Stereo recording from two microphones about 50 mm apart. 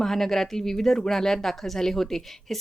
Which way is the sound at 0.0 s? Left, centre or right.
Centre.